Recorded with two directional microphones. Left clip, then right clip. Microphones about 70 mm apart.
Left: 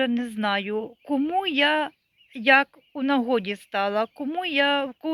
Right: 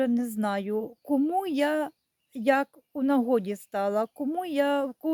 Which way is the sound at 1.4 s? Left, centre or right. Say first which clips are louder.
Left 5 dB; right.